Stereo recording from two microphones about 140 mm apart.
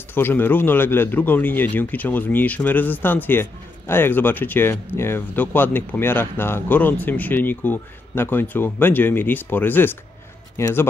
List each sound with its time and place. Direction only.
0.1 s speech: 15° left (ahead or behind)